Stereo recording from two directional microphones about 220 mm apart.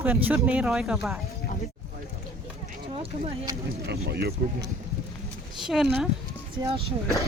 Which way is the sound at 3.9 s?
45° right (ahead or behind).